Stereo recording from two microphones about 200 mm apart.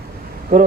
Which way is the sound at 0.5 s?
50° right (ahead or behind).